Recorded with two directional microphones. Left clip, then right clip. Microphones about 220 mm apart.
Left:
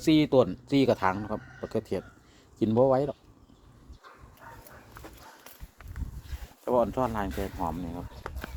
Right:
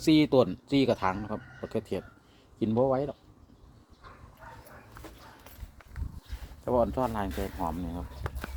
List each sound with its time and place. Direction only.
0.0 s speech: centre (ahead or behind)
2.6 s speech: 25° left (ahead or behind)
6.7 s speech: 10° left (ahead or behind)